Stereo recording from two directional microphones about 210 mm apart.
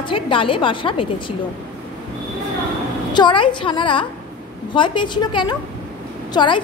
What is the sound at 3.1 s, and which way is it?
A woman's voice, 20° left (ahead or behind).